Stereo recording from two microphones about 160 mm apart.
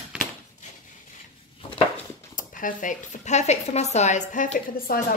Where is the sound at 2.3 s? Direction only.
55° left (ahead or behind).